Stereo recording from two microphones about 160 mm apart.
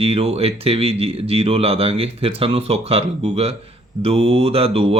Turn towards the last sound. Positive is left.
turn(degrees=-35)  # may be behind; listen again after turning